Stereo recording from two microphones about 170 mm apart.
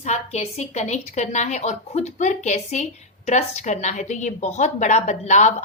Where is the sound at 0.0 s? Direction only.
40° left (ahead or behind).